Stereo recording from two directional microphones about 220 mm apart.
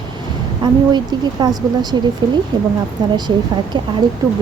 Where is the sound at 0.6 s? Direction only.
20° right (ahead or behind).